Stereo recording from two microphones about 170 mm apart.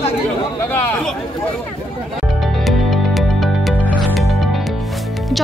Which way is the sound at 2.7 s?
Centre (ahead or behind).